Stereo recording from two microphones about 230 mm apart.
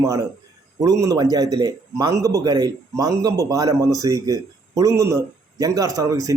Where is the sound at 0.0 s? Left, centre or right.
Centre.